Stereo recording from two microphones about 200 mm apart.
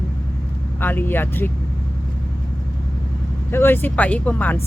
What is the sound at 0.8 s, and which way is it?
Speech, 10° left (ahead or behind).